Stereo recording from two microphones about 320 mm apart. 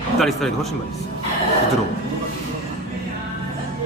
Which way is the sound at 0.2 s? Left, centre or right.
Centre.